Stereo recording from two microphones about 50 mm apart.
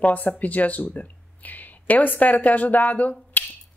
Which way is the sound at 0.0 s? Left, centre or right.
Left.